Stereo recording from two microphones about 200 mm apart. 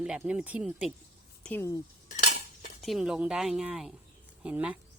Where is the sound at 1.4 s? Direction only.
10° left (ahead or behind).